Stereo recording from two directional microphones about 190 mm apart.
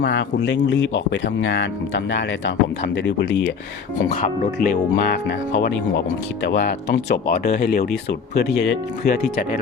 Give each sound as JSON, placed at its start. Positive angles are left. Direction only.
{"t": 0.0, "sound": "speech", "side_deg": 70}
{"t": 4.1, "sound": "speech", "side_deg": 35}
{"t": 4.9, "sound": "speech", "side_deg": 60}